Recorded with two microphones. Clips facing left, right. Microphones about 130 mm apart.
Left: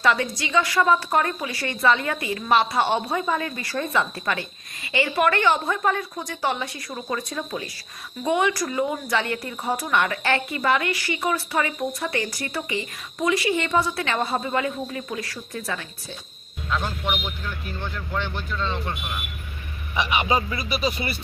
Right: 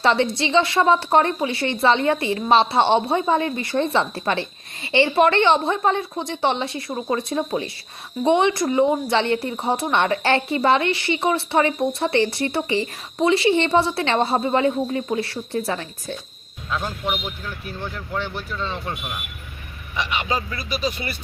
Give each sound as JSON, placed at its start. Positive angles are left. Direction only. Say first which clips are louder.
{"t": 0.0, "sound": "a woman's voice", "louder": "right 3 dB", "side_deg": -30}
{"t": 16.8, "sound": "a man's voice", "louder": "right 1 dB", "side_deg": -5}
{"t": 20.0, "sound": "a man's voice", "louder": "left 2 dB", "side_deg": 10}